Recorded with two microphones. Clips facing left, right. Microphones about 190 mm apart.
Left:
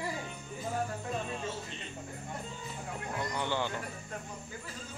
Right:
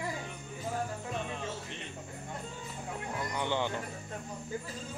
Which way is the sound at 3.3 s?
20° right (ahead or behind).